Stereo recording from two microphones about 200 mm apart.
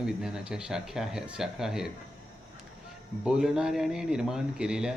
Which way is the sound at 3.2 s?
5° right (ahead or behind).